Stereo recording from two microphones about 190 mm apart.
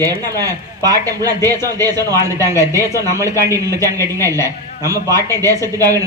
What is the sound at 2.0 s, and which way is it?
Speech, 15° left (ahead or behind).